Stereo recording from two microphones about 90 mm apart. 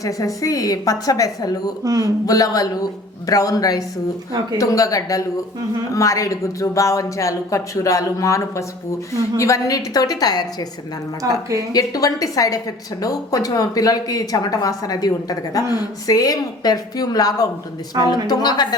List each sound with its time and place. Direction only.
0.0 s speech: 40° left (ahead or behind)
1.8 s a woman's voice: 40° right (ahead or behind)
2.2 s a woman's voice: 45° left (ahead or behind)
11.2 s a woman's voice: 40° right (ahead or behind)
11.7 s a woman's voice: 45° left (ahead or behind)
18.0 s speech: 45° right (ahead or behind)
18.3 s a woman's voice: 50° left (ahead or behind)